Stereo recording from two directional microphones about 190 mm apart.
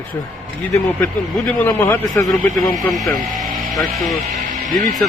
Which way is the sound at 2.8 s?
Centre (ahead or behind).